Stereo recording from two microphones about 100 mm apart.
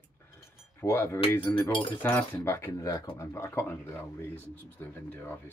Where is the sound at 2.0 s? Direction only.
20° left (ahead or behind).